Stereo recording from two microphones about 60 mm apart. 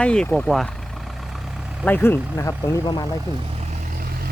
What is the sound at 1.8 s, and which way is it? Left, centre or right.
Speech, left.